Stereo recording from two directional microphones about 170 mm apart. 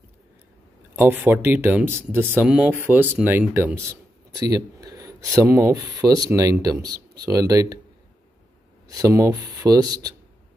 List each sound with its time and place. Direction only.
0.9 s speech: 10° right (ahead or behind)
8.8 s speech: 20° right (ahead or behind)